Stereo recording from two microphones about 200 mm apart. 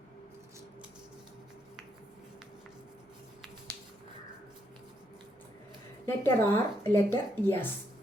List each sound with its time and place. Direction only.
6.1 s a woman's voice: 10° left (ahead or behind)